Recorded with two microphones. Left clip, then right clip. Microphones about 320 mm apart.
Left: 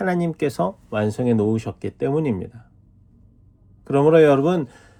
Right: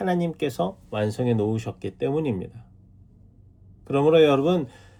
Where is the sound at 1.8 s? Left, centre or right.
Centre.